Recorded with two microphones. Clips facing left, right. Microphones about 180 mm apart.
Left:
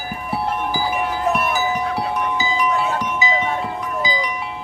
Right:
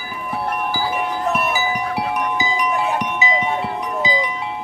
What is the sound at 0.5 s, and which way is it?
Wind chime, 15° left (ahead or behind).